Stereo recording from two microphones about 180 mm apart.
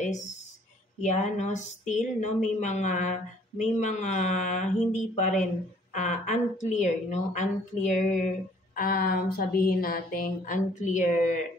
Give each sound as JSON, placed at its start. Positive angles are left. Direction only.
{"t": 1.0, "sound": "a woman's voice", "side_deg": 45}
{"t": 8.7, "sound": "a woman's voice", "side_deg": 55}